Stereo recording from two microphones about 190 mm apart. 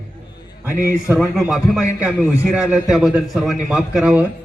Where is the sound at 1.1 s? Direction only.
Centre (ahead or behind).